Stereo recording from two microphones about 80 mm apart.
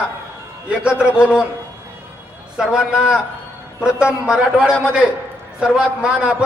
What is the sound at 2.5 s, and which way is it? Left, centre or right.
A man's voice, centre.